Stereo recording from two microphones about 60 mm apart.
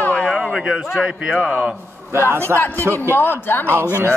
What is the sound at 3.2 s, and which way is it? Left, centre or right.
Speech, left.